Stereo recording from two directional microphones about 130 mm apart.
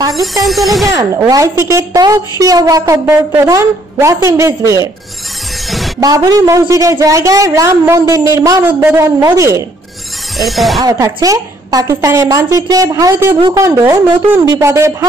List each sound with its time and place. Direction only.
0.1 s a sound: centre (ahead or behind)
0.9 s a woman's voice: 25° right (ahead or behind)
5.9 s a woman's voice: 25° right (ahead or behind)
8.6 s speech: 15° right (ahead or behind)
9.2 s a woman's voice: 25° right (ahead or behind)
10.3 s a sound: centre (ahead or behind)
10.8 s a woman's voice: 25° right (ahead or behind)